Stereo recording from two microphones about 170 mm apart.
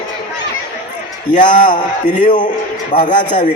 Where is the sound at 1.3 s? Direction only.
50° left (ahead or behind).